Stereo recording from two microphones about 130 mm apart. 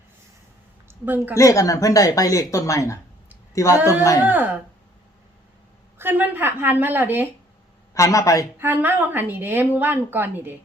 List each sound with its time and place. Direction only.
0.9 s a sound: 15° right (ahead or behind)
1.3 s speech: 25° left (ahead or behind)
4.2 s a woman's voice: 15° right (ahead or behind)
6.0 s a woman's voice: 15° right (ahead or behind)
7.9 s speech: 25° left (ahead or behind)
8.5 s a woman's voice: 15° right (ahead or behind)